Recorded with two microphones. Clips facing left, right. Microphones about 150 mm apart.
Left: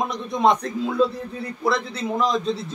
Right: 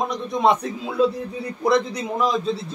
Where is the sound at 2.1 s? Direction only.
5° right (ahead or behind).